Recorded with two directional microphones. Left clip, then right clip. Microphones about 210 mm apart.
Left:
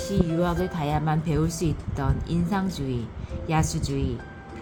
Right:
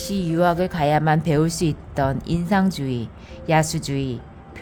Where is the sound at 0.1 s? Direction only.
55° right (ahead or behind).